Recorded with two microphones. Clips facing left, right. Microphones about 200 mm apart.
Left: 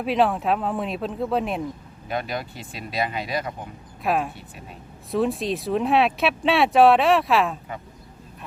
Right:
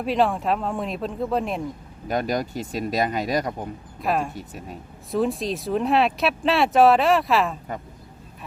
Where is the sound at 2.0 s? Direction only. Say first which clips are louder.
Right 4 dB; 40° right (ahead or behind).